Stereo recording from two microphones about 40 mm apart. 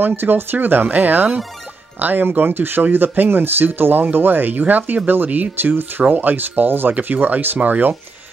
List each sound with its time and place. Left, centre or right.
0.0 s speech: right
2.3 s speech: right
6.0 s speech: right
6.3 s speech: right